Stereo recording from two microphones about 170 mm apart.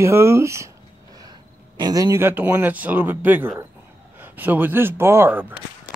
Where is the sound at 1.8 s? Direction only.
20° right (ahead or behind).